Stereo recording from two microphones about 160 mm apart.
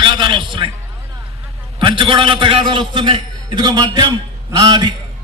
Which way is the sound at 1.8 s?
30° right (ahead or behind).